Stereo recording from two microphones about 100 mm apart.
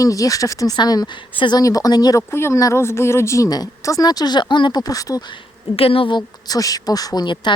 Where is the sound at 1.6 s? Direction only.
35° left (ahead or behind).